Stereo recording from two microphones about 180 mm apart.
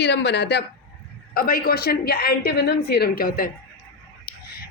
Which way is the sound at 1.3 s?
55° left (ahead or behind).